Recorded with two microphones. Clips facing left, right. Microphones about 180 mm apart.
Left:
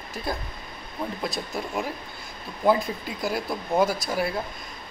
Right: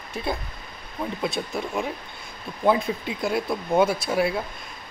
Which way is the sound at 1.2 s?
Centre (ahead or behind).